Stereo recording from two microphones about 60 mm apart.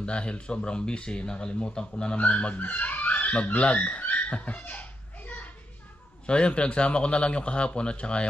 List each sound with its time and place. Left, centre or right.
0.0 s speech: centre